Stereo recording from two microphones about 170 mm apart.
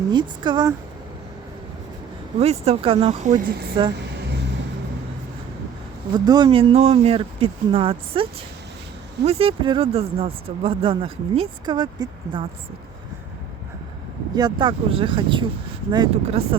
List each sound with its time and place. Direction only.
0.1 s speech: 25° right (ahead or behind)
2.4 s speech: 35° right (ahead or behind)
3.2 s speech: 50° right (ahead or behind)
6.1 s speech: 25° right (ahead or behind)
14.3 s speech: 25° right (ahead or behind)